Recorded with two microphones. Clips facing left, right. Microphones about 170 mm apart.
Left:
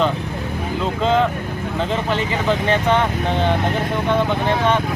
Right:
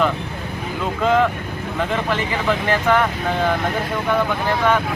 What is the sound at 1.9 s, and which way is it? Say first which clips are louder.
Speech: left 1 dB; 30° left (ahead or behind).